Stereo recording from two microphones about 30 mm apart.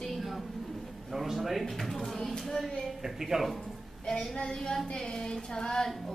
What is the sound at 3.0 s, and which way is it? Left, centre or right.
Speech, centre.